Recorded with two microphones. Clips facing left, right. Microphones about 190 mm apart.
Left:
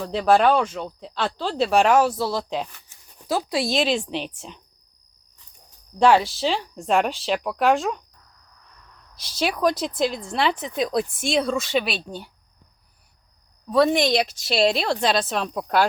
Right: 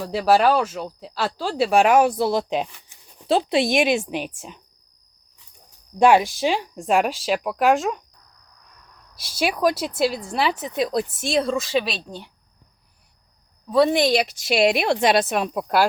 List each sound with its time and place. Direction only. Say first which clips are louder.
0.0 s a woman's voice: even; 10° right (ahead or behind)
6.0 s speech: right 1 dB; 15° right (ahead or behind)
9.1 s speech: right 1 dB; 10° right (ahead or behind)
13.7 s speech: right 1 dB; centre (ahead or behind)